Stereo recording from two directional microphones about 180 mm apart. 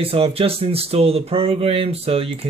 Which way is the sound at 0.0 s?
30° right (ahead or behind).